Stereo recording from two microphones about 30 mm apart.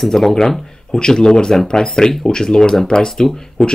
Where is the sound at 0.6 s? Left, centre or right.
Left.